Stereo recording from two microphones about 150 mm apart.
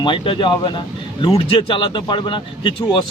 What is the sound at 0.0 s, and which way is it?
Speech, 35° left (ahead or behind).